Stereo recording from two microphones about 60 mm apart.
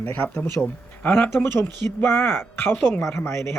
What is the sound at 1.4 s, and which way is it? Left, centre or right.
Speech, left.